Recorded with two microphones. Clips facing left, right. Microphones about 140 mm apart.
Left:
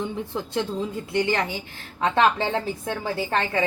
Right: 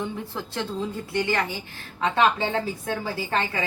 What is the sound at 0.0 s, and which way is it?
A woman's voice, 15° left (ahead or behind).